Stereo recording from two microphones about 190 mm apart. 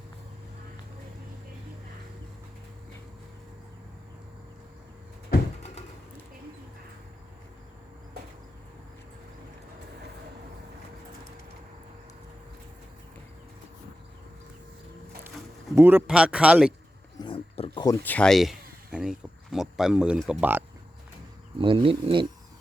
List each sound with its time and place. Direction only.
15.7 s speech: 10° right (ahead or behind)
17.2 s pig: 25° left (ahead or behind)
17.7 s a sound: 20° left (ahead or behind)
18.0 s a sound: 5° left (ahead or behind)
20.4 s speech: 10° right (ahead or behind)
21.6 s speech: 25° right (ahead or behind)